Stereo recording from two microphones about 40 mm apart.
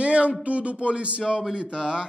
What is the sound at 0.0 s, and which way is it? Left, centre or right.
Speech, right.